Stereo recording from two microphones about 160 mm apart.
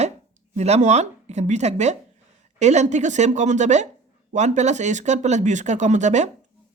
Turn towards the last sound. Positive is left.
turn(degrees=-45)  # may be behind; listen again after turning